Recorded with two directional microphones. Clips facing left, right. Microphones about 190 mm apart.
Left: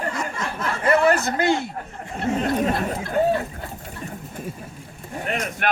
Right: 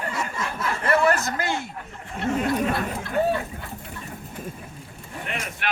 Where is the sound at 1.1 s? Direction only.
30° left (ahead or behind).